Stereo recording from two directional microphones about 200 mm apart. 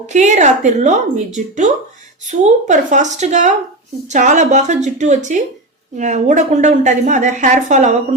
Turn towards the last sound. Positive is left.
turn(degrees=-35)  # may be behind; listen again after turning